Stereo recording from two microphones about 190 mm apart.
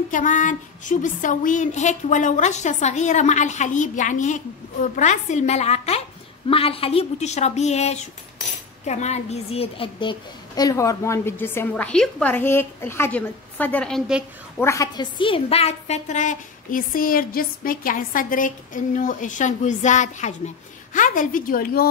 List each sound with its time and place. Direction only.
0.1 s a woman's voice: 40° left (ahead or behind); by 14.2 s centre (ahead or behind)
14.6 s a woman's voice: 15° left (ahead or behind); by 21.8 s 50° left (ahead or behind)